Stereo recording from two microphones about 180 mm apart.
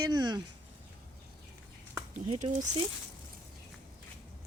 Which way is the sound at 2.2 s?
40° right (ahead or behind).